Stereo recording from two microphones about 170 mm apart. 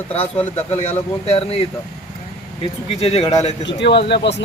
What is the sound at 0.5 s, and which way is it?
Speech, 40° left (ahead or behind).